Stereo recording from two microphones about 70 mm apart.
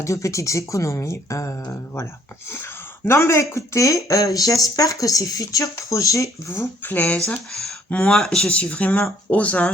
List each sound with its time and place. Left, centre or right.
0.0 s speech: left
3.1 s speech: left
6.8 s speech: left